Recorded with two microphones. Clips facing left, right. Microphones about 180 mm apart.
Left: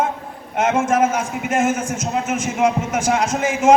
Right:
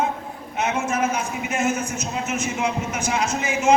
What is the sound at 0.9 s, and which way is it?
A man's voice, 90° left.